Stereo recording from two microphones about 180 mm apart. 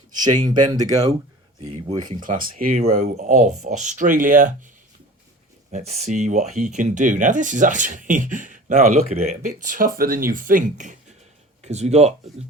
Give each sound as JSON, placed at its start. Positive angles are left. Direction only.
{"t": 0.2, "sound": "speech", "side_deg": -25}
{"t": 1.5, "sound": "speech", "side_deg": -30}
{"t": 2.2, "sound": "speech", "side_deg": -50}
{"t": 5.7, "sound": "speech", "side_deg": -40}